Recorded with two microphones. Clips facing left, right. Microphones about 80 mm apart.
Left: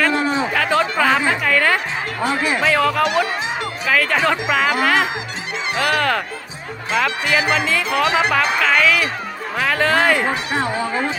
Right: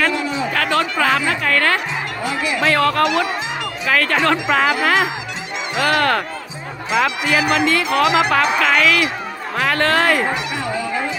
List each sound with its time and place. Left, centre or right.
0.1 s a sound: left
0.5 s a sound: centre
0.9 s speech: centre
1.5 s music: centre
2.2 s speech: left
2.6 s speech: centre
10.5 s speech: left